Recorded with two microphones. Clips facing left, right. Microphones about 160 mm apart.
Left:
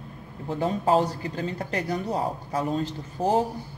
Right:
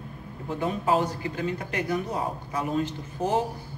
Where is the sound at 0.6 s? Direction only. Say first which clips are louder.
Left 2 dB; 35° left (ahead or behind).